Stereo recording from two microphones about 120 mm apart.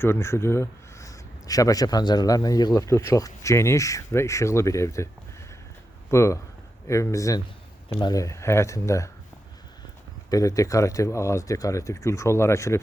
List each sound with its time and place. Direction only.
0.0 s speech: 20° left (ahead or behind)
6.1 s speech: 25° left (ahead or behind)
7.9 s speech: 40° left (ahead or behind)
8.2 s speech: 25° left (ahead or behind)
10.2 s speech: 30° left (ahead or behind)